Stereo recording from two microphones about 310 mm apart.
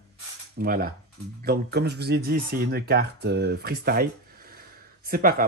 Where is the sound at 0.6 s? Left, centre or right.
Right.